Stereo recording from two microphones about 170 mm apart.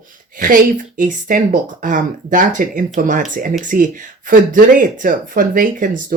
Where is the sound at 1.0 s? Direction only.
50° right (ahead or behind).